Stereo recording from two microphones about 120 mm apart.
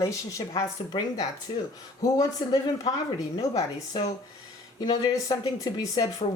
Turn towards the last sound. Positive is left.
turn(degrees=30)  # may be behind; listen again after turning